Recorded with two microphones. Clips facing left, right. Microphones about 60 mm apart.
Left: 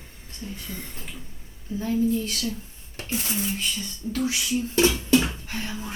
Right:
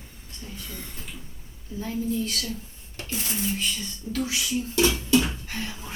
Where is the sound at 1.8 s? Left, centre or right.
Left.